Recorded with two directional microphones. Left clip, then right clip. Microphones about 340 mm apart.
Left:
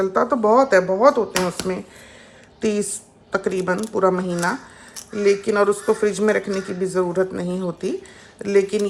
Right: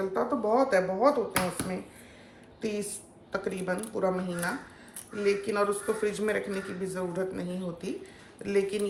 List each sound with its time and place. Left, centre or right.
0.0 s speech: left
2.6 s a woman's voice: left